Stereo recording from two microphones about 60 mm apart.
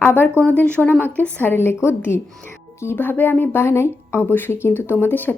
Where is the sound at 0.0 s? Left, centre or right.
Left.